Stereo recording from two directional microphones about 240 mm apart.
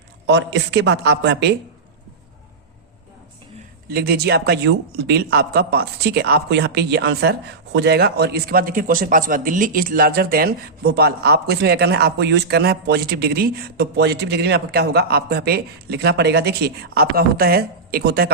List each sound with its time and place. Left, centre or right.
0.3 s a woman's voice: right
3.8 s a man's voice: right